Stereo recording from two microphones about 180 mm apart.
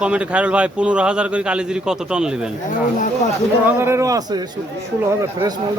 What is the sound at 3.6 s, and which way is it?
Speech, 15° right (ahead or behind).